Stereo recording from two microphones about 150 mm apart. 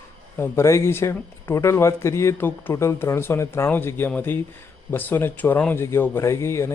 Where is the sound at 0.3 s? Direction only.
15° left (ahead or behind).